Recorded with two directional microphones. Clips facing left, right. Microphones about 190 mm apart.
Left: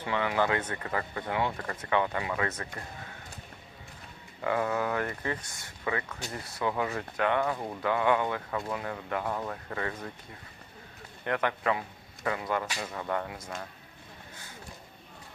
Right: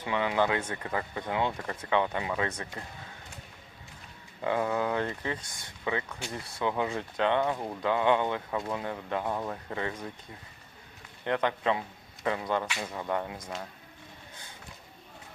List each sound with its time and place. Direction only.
0.0 s speech: 20° right (ahead or behind)
4.4 s speech: 15° right (ahead or behind)
7.5 s speech: 5° right (ahead or behind)
7.8 s speech: 20° right (ahead or behind)
11.3 s speech: 20° right (ahead or behind)